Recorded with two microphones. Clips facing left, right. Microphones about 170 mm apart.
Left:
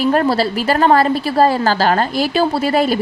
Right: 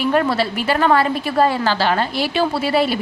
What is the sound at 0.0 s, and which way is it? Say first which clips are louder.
A woman's voice: left 3 dB; 40° left (ahead or behind).